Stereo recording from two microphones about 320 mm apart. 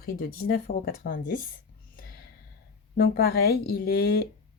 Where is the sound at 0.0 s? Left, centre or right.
Left.